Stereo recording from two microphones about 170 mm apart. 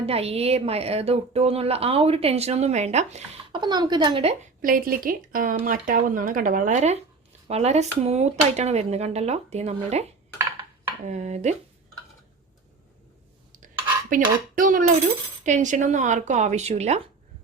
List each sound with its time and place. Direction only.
0.0 s a woman's voice: 35° right (ahead or behind)
3.6 s speech: 25° right (ahead or behind)
4.6 s a woman's voice: 55° right (ahead or behind); by 10.1 s 40° right (ahead or behind)
11.1 s speech: 45° right (ahead or behind)
14.1 s speech: 55° right (ahead or behind)